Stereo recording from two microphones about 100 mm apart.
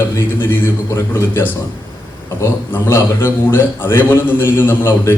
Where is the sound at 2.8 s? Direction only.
25° left (ahead or behind).